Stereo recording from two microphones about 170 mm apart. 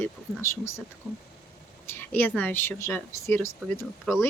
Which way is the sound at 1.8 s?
10° left (ahead or behind).